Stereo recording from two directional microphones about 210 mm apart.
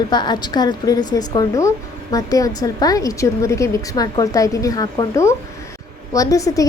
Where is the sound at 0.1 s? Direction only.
20° left (ahead or behind).